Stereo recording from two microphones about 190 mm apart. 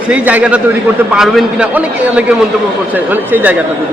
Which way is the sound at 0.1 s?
5° right (ahead or behind).